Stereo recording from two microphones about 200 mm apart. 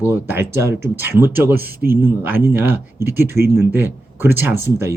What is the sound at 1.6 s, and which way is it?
Speech, 50° right (ahead or behind).